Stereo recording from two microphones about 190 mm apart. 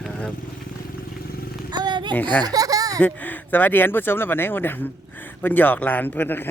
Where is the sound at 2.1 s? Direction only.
10° left (ahead or behind).